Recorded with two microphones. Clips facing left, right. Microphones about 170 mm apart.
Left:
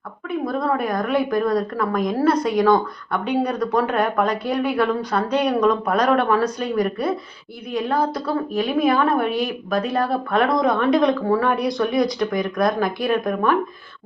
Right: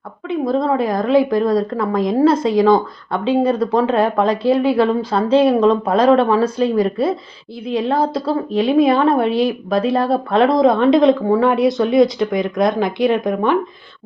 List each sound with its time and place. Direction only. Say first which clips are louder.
0.3 s a woman's voice: right 5 dB; 25° right (ahead or behind)